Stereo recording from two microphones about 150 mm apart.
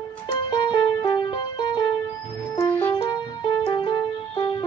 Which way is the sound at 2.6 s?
10° left (ahead or behind).